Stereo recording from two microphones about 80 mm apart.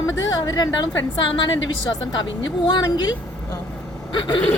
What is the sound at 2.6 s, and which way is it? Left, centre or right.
Speech, left.